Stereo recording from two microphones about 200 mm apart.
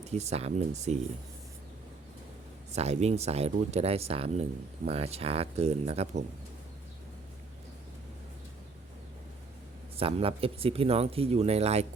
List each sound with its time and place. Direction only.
0.0 s speech: 35° right (ahead or behind)
2.7 s speech: 35° right (ahead or behind)
10.0 s speech: 30° right (ahead or behind)